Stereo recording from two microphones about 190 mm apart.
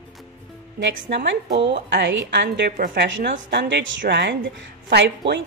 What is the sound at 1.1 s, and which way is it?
A woman's voice, 70° right (ahead or behind).